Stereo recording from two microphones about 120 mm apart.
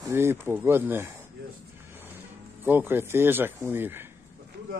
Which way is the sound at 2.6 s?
15° right (ahead or behind).